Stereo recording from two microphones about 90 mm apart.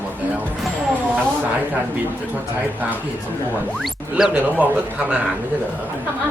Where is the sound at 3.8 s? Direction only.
5° right (ahead or behind).